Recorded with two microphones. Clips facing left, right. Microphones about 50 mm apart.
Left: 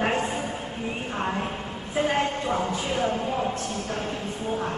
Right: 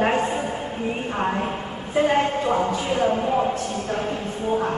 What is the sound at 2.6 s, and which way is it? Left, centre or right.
Speech, centre.